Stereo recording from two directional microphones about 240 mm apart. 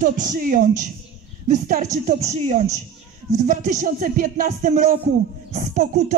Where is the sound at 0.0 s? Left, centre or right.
Right.